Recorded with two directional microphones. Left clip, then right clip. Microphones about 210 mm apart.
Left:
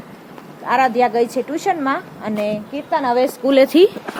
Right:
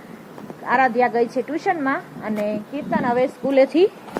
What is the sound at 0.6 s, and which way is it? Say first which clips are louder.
A woman's voice: left 2 dB; 5° left (ahead or behind).